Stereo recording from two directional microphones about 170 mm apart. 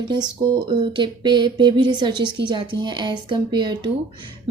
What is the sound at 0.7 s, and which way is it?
Speech, 30° right (ahead or behind).